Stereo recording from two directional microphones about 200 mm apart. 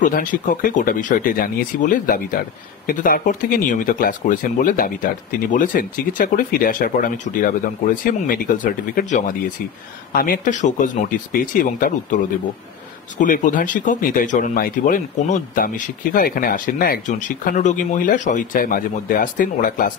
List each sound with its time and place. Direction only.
0.0 s speech: 40° left (ahead or behind)
13.2 s speech: 40° left (ahead or behind)